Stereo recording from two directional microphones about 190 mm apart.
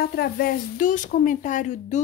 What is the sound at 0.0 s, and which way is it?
A woman's voice, 55° left (ahead or behind).